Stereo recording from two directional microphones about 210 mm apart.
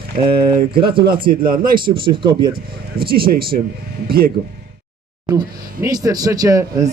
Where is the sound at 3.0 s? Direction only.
45° right (ahead or behind).